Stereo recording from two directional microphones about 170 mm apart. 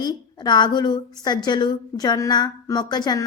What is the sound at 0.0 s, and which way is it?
A woman's voice, 25° left (ahead or behind).